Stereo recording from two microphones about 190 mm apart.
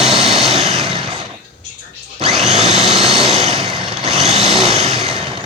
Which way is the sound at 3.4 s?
30° right (ahead or behind).